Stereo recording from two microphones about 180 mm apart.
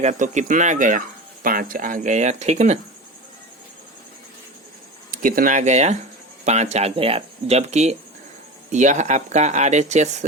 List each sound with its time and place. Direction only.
0.0 s speech: 40° right (ahead or behind)
5.1 s speech: 50° right (ahead or behind)